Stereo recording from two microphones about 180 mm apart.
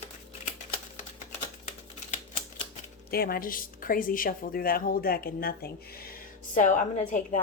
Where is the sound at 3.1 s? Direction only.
55° left (ahead or behind).